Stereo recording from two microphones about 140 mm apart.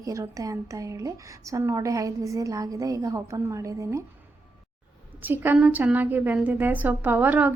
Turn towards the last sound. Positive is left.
turn(degrees=-10)  # may be behind; listen again after turning